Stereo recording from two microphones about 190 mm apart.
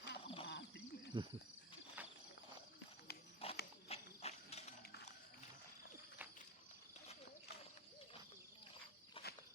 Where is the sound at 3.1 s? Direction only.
55° left (ahead or behind).